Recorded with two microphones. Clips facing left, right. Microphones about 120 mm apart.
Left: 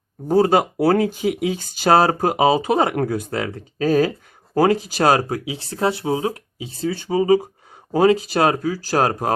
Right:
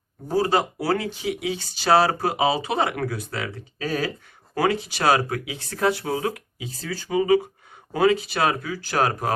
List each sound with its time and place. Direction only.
0.3 s speech: 55° left (ahead or behind); by 7.3 s 25° left (ahead or behind)
7.3 s speech: 40° left (ahead or behind)